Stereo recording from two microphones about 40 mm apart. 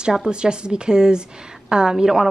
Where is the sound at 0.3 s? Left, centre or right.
Right.